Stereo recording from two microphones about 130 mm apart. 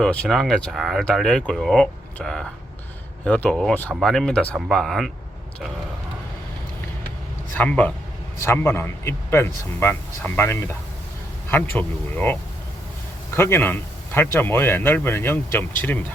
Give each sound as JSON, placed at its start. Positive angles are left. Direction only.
{"t": 0.0, "sound": "speech", "side_deg": 5}
{"t": 7.5, "sound": "speech", "side_deg": 10}